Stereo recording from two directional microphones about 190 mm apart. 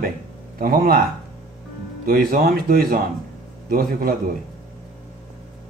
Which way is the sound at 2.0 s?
50° right (ahead or behind).